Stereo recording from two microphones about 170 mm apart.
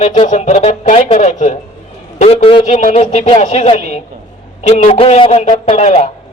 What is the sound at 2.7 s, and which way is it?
Speech, 45° left (ahead or behind).